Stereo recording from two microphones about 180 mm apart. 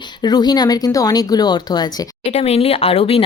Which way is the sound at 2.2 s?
35° left (ahead or behind).